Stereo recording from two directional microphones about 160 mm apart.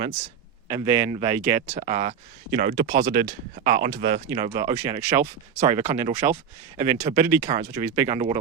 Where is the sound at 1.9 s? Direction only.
45° right (ahead or behind).